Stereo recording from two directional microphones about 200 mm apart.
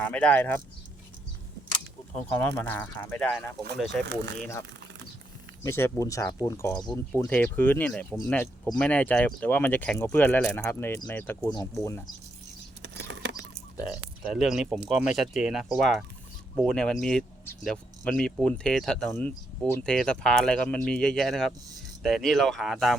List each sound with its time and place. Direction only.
0.0 s speech: 5° left (ahead or behind)
2.3 s speech: 10° left (ahead or behind)
4.0 s speech: 60° right (ahead or behind)
4.4 s speech: 15° left (ahead or behind)
5.6 s speech: 15° left (ahead or behind)
12.8 s a sound: 60° right (ahead or behind)
14.3 s speech: centre (ahead or behind)